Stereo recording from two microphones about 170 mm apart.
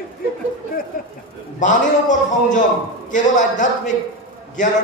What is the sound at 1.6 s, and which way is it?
A man's voice, 45° left (ahead or behind).